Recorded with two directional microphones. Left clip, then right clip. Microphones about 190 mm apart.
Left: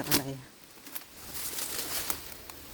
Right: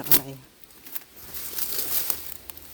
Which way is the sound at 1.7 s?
40° right (ahead or behind).